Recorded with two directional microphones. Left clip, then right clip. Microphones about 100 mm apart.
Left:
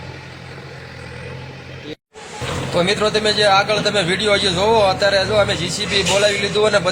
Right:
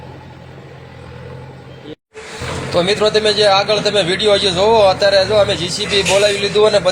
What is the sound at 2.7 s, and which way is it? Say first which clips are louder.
A man's voice: right 4 dB; 15° right (ahead or behind).